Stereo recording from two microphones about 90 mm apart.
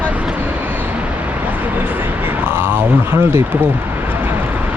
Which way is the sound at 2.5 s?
25° right (ahead or behind).